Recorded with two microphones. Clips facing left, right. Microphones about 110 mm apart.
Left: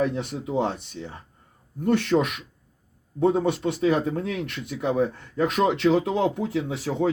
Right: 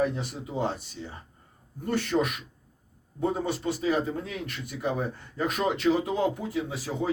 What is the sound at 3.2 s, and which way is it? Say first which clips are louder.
Speech: left 7 dB; 75° left (ahead or behind).